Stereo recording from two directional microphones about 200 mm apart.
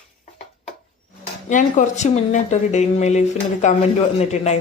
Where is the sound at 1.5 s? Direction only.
40° left (ahead or behind).